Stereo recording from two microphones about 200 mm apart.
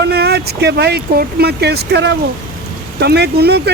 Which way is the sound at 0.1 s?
50° right (ahead or behind).